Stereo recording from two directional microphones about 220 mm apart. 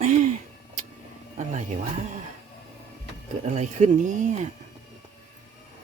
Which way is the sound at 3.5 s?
35° right (ahead or behind).